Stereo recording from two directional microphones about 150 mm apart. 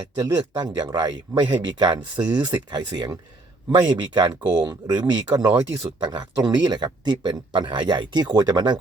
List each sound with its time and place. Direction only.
0.2 s speech: 25° right (ahead or behind)